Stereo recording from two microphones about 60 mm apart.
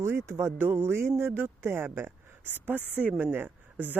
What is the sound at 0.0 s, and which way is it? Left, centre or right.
A woman's voice, right.